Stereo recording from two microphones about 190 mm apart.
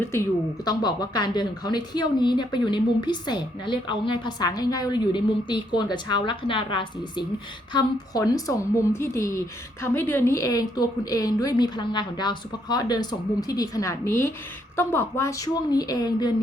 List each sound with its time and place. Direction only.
0.0 s a woman's voice: 15° left (ahead or behind)